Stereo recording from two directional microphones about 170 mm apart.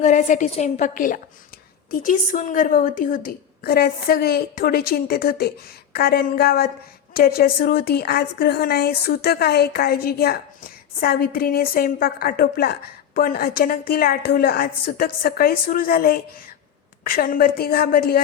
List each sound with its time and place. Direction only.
0.0 s a woman's voice: 45° left (ahead or behind)